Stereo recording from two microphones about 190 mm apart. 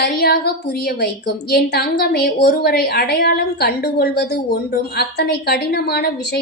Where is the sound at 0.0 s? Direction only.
55° left (ahead or behind).